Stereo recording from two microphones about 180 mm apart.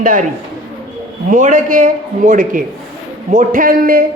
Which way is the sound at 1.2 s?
45° right (ahead or behind).